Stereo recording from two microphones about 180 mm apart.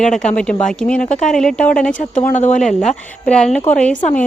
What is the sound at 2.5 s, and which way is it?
A woman's voice, 5° left (ahead or behind).